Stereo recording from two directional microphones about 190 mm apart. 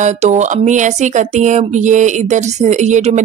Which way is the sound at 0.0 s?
35° right (ahead or behind).